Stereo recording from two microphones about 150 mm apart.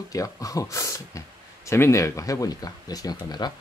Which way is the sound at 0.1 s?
20° left (ahead or behind).